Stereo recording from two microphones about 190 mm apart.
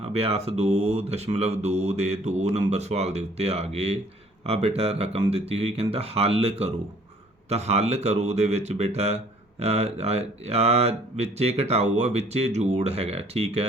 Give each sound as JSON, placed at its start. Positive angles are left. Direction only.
{"t": 0.0, "sound": "speech", "side_deg": -30}